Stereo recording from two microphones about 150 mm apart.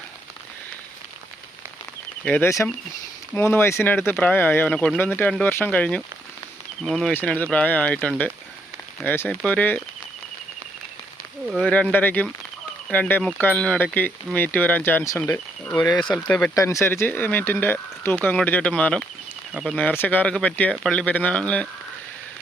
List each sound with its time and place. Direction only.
2.2 s speech: 15° left (ahead or behind)
7.1 s speech: 10° left (ahead or behind)
11.6 s speech: 10° left (ahead or behind)
16.0 s speech: 5° left (ahead or behind)
16.6 s speech: 20° left (ahead or behind)